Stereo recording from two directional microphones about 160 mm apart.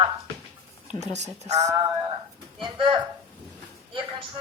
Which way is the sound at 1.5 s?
20° right (ahead or behind).